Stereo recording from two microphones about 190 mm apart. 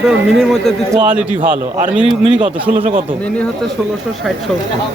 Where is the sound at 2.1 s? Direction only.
25° right (ahead or behind).